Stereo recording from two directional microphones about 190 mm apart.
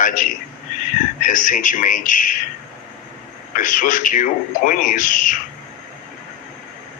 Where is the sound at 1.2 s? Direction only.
45° left (ahead or behind).